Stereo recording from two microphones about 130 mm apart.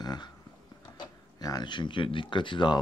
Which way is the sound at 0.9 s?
30° left (ahead or behind).